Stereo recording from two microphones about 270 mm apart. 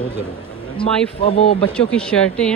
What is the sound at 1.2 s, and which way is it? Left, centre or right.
Speech, left.